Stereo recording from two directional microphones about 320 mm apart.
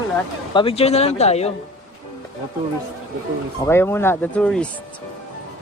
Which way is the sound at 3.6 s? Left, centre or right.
Centre.